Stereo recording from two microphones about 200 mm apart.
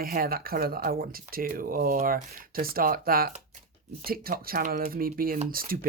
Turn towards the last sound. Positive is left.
turn(degrees=-45)  # may be behind; listen again after turning